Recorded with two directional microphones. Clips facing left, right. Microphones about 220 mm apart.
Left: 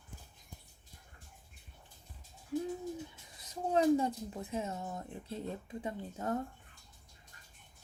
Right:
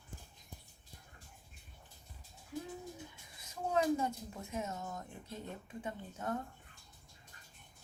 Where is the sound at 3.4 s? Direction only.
35° left (ahead or behind).